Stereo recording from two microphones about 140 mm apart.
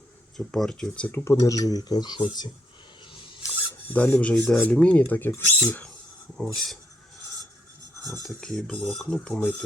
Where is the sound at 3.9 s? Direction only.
10° left (ahead or behind).